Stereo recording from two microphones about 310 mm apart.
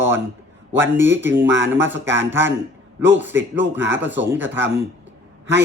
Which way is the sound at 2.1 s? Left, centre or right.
Centre.